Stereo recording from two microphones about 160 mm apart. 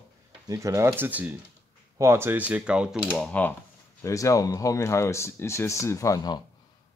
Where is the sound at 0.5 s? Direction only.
20° right (ahead or behind); by 3.5 s 5° left (ahead or behind).